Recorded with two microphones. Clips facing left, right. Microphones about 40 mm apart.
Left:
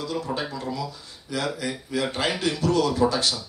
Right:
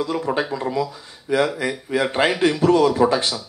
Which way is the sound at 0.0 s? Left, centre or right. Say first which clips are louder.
Right 6 dB; right.